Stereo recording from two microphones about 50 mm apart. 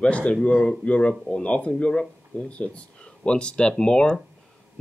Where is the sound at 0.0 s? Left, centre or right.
Left.